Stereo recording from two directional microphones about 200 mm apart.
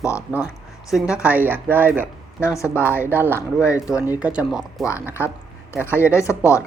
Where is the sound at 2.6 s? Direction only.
10° left (ahead or behind).